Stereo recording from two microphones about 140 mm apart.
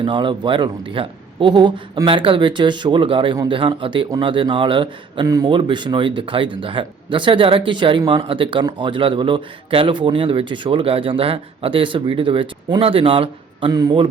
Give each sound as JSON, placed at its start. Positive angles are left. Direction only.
{"t": 0.0, "sound": "speech", "side_deg": -35}
{"t": 5.3, "sound": "speech", "side_deg": -25}
{"t": 5.5, "sound": "speech", "side_deg": -35}